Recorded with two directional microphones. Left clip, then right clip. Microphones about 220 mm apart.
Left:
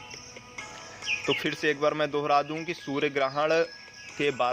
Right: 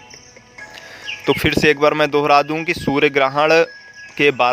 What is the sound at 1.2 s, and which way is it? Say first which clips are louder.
Speech: right 14 dB; 50° right (ahead or behind).